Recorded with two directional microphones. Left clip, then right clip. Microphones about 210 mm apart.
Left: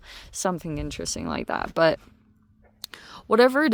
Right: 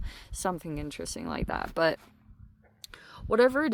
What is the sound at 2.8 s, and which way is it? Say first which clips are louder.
Whispering: left 6 dB; 40° left (ahead or behind).